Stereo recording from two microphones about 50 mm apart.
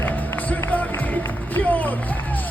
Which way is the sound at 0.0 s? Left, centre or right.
Left.